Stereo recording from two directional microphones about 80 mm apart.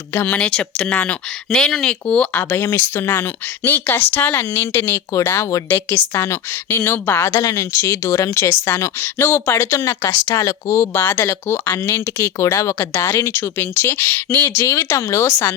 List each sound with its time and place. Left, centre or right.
0.1 s speech: left
0.3 s speech: centre
2.5 s speech: left
8.4 s speech: left
9.6 s speech: left
10.3 s speech: left
10.9 s speech: left
14.6 s speech: left